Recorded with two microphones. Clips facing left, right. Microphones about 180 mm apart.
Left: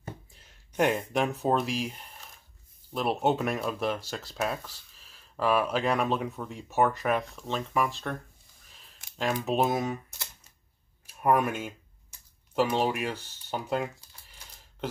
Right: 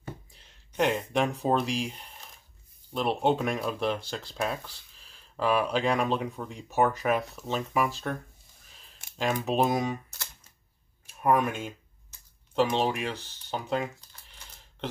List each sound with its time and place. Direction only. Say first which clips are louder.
0.4 s speech: left 1 dB; 5° left (ahead or behind)
11.1 s speech: even; 5° left (ahead or behind)